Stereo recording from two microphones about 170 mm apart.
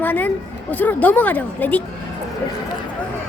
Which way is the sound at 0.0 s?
10° left (ahead or behind).